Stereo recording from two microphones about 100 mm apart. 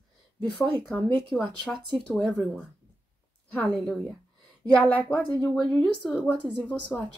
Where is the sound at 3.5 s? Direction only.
10° left (ahead or behind).